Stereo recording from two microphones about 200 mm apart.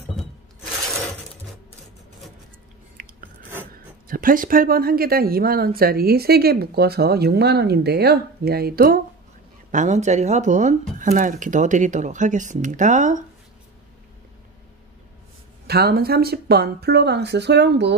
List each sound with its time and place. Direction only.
3.0 s filing: 45° right (ahead or behind)
4.1 s speech: 45° right (ahead or behind)
9.7 s speech: 35° right (ahead or behind)
15.6 s speech: 50° right (ahead or behind)